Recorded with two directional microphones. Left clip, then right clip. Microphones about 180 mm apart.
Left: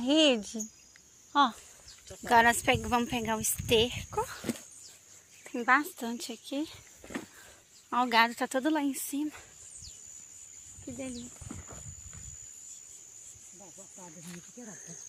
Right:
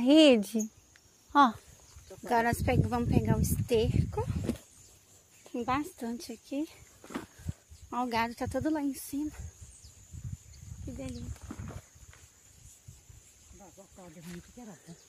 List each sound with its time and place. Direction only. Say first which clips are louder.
0.0 s speech: right 4 dB; 50° right (ahead or behind)
2.2 s a woman's voice: left 5 dB; centre (ahead or behind)
5.6 s a woman's voice: left 6 dB; centre (ahead or behind); by 9.4 s 25° left (ahead or behind)
11.1 s a sound: left 1 dB; 20° left (ahead or behind)